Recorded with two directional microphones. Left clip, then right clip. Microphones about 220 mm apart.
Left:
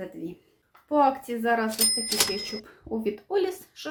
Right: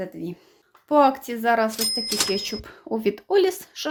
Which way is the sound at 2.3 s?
35° right (ahead or behind).